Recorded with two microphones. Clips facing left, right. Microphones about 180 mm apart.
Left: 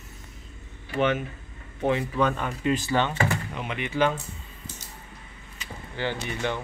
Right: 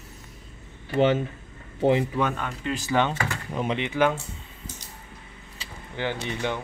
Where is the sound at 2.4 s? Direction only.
5° left (ahead or behind).